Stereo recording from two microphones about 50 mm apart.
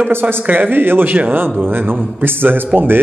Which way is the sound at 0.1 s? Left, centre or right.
Right.